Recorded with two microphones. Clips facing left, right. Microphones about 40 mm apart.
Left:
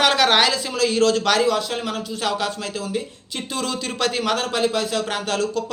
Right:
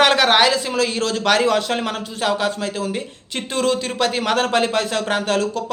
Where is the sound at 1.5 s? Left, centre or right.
Right.